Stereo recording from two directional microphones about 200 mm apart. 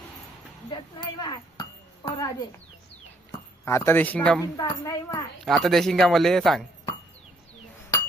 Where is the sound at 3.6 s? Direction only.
15° left (ahead or behind).